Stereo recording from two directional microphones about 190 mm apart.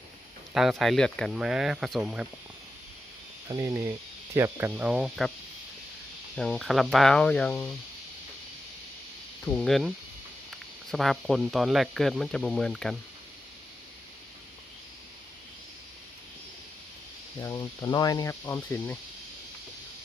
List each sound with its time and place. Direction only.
0.5 s speech: centre (ahead or behind)
3.5 s speech: 15° right (ahead or behind); by 5.3 s centre (ahead or behind)
6.3 s speech: 5° left (ahead or behind)
9.4 s speech: 5° left (ahead or behind)
10.9 s speech: centre (ahead or behind)
17.4 s speech: 20° left (ahead or behind)